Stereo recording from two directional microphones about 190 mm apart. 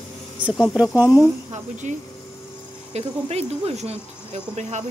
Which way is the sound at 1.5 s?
40° right (ahead or behind).